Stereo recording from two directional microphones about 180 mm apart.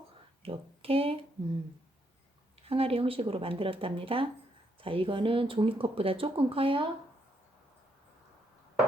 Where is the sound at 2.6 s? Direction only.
30° right (ahead or behind).